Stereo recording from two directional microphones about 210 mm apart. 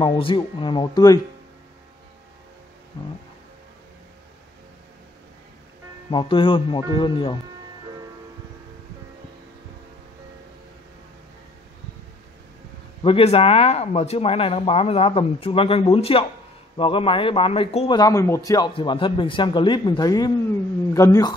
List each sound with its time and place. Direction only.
0.0 s speech: 25° left (ahead or behind)
6.0 s speech: 25° left (ahead or behind)
13.0 s speech: 25° left (ahead or behind)